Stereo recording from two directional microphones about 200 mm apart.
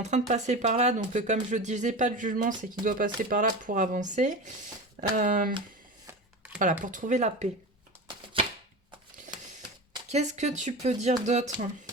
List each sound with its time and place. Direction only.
0.0 s speech: 35° right (ahead or behind)
6.1 s a sound: 5° right (ahead or behind)
6.6 s speech: 40° right (ahead or behind)
10.1 s speech: 35° right (ahead or behind)